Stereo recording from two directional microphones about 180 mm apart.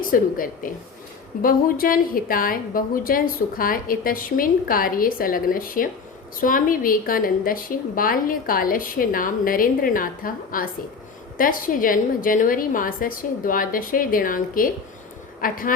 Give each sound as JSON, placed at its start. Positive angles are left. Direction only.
{"t": 0.0, "sound": "a woman's voice", "side_deg": 50}